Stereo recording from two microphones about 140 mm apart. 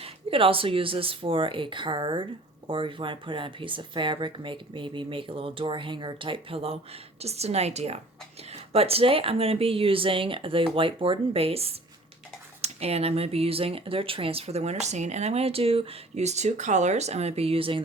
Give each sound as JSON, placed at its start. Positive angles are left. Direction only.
{"t": 0.0, "sound": "speech", "side_deg": -40}